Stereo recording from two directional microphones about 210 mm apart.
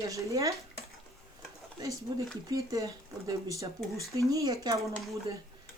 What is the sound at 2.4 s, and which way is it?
A woman's voice, 15° right (ahead or behind).